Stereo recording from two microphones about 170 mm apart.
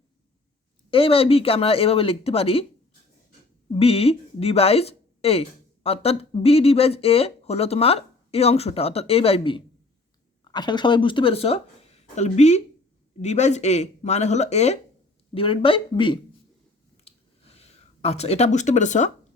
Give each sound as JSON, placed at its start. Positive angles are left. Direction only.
{"t": 0.9, "sound": "speech", "side_deg": 30}
{"t": 3.7, "sound": "speech", "side_deg": 35}
{"t": 17.0, "sound": "a sound", "side_deg": 35}